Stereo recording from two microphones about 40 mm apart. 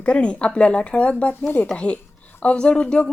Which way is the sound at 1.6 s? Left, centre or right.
Left.